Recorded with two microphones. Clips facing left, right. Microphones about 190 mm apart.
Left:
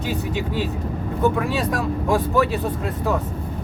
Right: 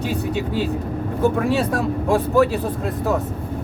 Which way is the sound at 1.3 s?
35° right (ahead or behind).